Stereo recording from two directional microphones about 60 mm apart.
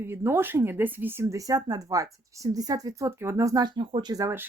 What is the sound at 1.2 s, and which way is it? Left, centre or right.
Speech, right.